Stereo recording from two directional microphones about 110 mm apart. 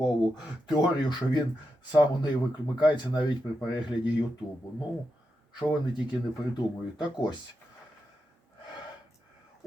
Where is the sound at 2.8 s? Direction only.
45° left (ahead or behind).